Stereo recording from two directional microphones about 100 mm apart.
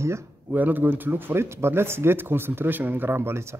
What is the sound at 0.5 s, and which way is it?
Speech, 15° right (ahead or behind).